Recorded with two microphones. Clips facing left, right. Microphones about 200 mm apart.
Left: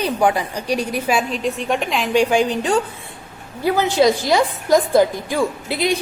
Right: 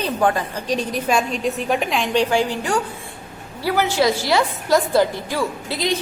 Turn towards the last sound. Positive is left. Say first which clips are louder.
# left 3 dB
turn(degrees=15)  # may be behind; listen again after turning